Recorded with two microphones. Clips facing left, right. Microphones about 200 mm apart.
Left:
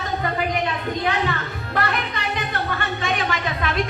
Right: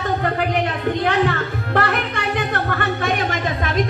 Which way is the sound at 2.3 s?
50° right (ahead or behind).